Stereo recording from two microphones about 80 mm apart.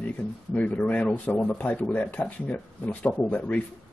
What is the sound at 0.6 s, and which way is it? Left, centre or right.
Speech, centre.